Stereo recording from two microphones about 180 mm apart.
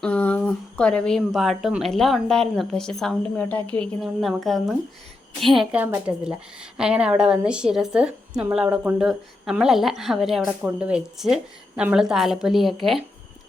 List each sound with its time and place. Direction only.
0.0 s a woman's voice: 10° left (ahead or behind)